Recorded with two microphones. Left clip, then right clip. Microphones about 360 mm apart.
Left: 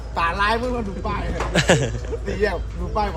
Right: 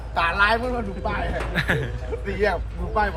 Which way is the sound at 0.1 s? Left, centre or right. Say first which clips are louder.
Right 1 dB; centre.